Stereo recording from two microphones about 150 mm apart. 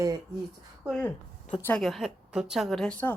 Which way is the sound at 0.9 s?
5° left (ahead or behind).